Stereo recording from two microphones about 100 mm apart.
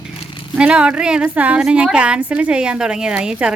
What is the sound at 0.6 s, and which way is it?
A woman's voice, 10° right (ahead or behind).